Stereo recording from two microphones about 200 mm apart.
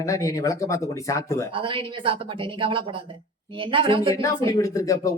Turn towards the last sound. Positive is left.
turn(degrees=15)  # may be behind; listen again after turning